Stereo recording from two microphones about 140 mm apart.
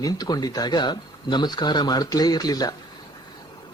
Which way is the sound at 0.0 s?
30° left (ahead or behind).